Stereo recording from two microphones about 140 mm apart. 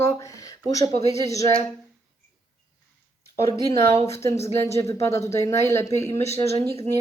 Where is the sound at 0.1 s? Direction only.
25° left (ahead or behind).